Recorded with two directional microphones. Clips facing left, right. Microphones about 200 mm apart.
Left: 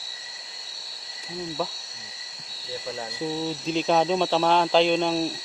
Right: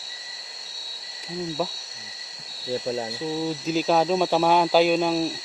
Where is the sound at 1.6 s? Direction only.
10° right (ahead or behind).